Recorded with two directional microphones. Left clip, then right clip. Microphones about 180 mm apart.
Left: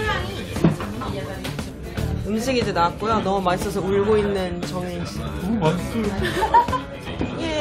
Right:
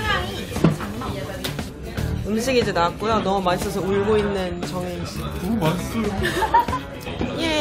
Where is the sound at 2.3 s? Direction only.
5° right (ahead or behind).